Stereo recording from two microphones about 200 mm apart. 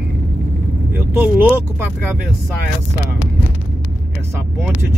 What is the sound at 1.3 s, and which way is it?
Speech, 10° right (ahead or behind).